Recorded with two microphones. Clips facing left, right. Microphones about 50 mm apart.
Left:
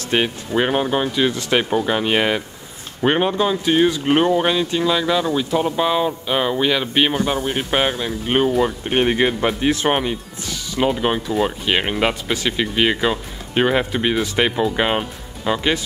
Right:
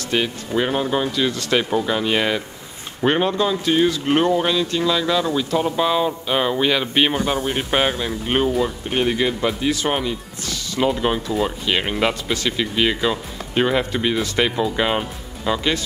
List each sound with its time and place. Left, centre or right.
0.1 s speech: left; by 8.6 s centre
8.6 s speech: left